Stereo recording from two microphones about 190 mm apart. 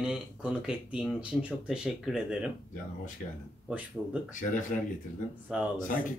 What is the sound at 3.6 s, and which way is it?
Speech, 10° right (ahead or behind).